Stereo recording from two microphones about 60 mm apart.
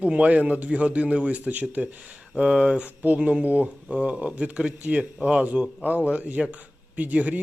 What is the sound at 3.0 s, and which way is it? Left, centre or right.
Speech, right.